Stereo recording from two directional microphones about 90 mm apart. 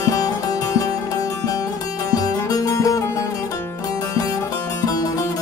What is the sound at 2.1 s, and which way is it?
Music, 45° left (ahead or behind).